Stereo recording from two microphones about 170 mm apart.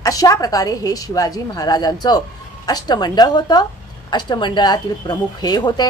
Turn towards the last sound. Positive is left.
turn(degrees=25)  # may be behind; listen again after turning